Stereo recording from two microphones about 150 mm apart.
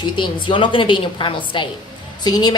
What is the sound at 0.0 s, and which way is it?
A woman's voice, 35° left (ahead or behind).